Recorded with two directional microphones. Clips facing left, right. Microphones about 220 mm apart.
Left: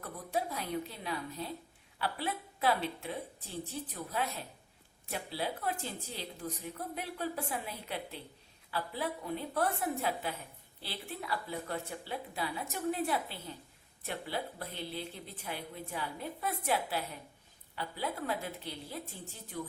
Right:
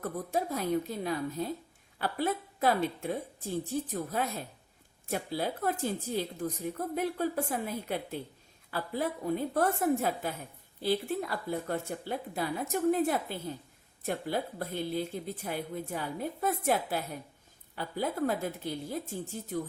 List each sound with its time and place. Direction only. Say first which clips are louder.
0.0 s a woman's voice: right 4 dB; 45° right (ahead or behind)